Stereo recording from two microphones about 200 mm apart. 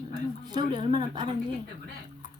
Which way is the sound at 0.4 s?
20° right (ahead or behind).